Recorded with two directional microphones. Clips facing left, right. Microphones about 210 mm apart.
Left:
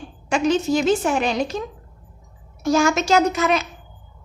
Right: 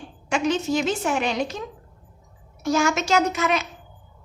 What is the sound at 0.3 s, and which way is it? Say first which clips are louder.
A woman's voice: left 4 dB; 35° left (ahead or behind).